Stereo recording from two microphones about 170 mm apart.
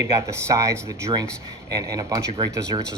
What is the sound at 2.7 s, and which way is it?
Speech, 25° right (ahead or behind).